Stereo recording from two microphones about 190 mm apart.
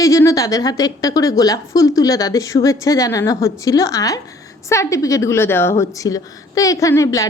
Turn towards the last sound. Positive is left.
turn(degrees=15)  # may be behind; listen again after turning